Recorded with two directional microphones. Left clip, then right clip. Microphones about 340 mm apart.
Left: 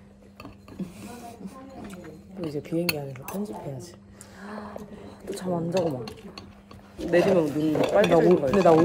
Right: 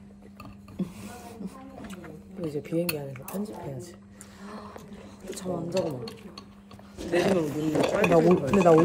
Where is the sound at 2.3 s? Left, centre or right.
Left.